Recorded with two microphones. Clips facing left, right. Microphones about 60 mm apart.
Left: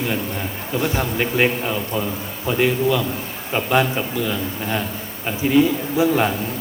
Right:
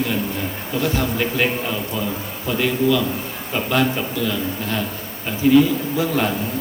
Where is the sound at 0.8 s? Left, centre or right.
Centre.